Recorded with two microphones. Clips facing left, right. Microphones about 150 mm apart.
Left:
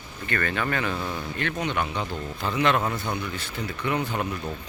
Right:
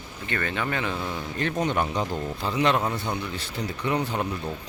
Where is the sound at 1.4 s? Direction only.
40° right (ahead or behind).